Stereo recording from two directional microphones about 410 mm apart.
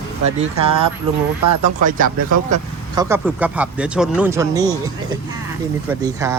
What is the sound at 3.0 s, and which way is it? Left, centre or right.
Speech, centre.